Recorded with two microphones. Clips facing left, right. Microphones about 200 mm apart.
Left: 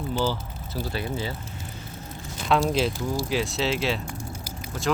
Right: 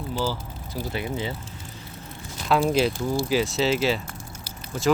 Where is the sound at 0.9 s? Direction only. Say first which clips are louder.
Right 2 dB; 20° right (ahead or behind).